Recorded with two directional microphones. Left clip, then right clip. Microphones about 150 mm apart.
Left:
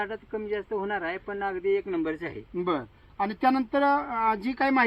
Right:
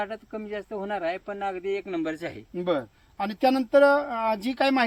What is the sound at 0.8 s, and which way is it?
Speech, 55° right (ahead or behind).